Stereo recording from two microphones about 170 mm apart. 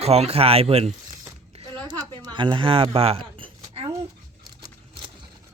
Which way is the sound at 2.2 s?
25° right (ahead or behind).